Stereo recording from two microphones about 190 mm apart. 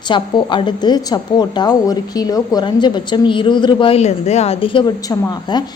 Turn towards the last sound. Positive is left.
turn(degrees=20)  # may be behind; listen again after turning